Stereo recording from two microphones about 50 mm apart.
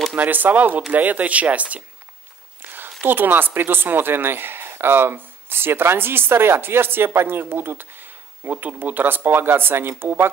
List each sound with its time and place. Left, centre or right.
0.1 s speech: right
2.6 s speech: right